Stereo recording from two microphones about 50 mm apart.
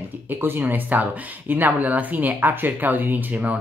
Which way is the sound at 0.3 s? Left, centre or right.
Right.